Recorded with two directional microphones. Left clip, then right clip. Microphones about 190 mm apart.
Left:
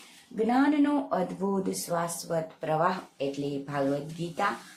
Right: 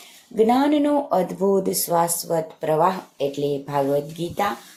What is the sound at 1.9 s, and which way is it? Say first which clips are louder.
A woman's voice: right 10 dB; 15° right (ahead or behind).